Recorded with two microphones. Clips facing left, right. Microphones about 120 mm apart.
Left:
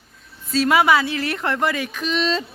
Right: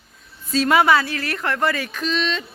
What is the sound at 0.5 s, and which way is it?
Speech, 5° left (ahead or behind).